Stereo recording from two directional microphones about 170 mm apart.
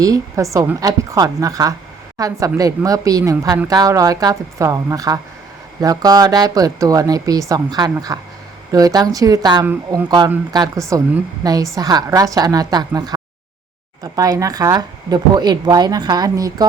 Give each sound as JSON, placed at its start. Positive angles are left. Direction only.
{"t": 0.0, "sound": "a woman's voice", "side_deg": -20}